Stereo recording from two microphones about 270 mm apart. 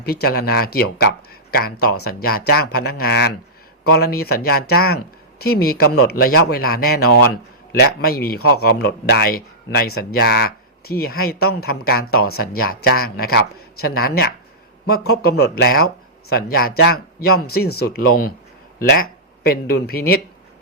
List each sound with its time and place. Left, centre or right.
0.0 s speech: left